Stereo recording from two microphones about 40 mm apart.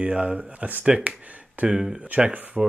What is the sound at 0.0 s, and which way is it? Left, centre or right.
Speech, right.